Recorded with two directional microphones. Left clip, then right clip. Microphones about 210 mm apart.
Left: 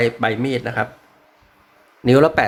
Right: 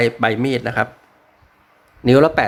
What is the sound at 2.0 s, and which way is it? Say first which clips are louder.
Speech: right 1 dB; 10° right (ahead or behind).